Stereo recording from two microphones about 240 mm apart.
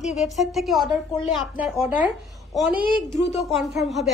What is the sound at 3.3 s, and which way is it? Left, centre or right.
Speech, centre.